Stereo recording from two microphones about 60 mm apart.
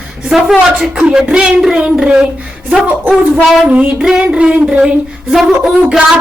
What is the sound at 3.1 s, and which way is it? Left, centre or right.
Female singing, centre.